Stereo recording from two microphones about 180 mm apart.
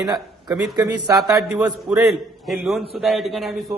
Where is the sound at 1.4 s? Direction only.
Centre (ahead or behind).